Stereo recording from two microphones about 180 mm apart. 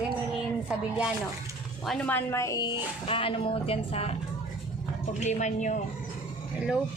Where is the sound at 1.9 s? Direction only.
5° left (ahead or behind); by 4.2 s 35° left (ahead or behind).